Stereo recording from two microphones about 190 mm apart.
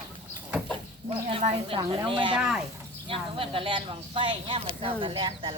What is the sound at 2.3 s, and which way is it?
Speech, 5° right (ahead or behind).